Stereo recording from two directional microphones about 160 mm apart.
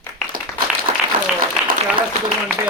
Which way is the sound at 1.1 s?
60° right (ahead or behind).